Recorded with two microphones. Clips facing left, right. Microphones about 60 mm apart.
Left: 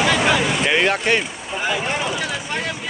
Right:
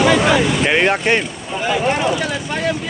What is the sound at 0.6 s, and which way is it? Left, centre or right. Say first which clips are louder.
Vehicle: right 3 dB; centre.